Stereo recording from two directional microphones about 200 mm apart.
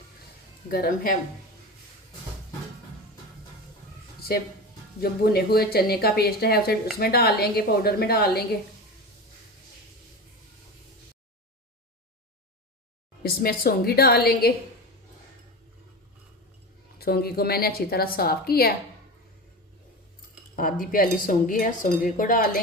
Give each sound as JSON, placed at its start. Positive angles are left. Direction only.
{"t": 0.7, "sound": "speech", "side_deg": 50}
{"t": 4.9, "sound": "speech", "side_deg": 50}
{"t": 13.2, "sound": "speech", "side_deg": 50}
{"t": 17.0, "sound": "speech", "side_deg": 50}
{"t": 20.6, "sound": "speech", "side_deg": 45}